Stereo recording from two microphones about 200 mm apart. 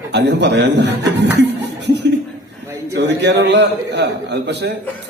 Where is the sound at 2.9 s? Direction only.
60° right (ahead or behind).